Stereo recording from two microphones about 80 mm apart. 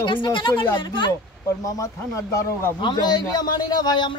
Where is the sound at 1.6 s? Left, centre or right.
Left.